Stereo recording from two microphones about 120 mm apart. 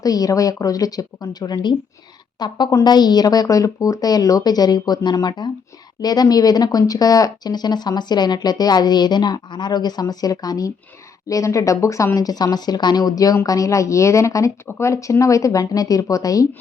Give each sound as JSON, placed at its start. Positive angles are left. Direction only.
{"t": 0.0, "sound": "speech", "side_deg": 30}